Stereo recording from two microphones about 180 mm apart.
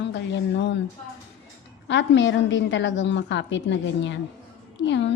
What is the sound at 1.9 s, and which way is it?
A woman's voice, 90° left.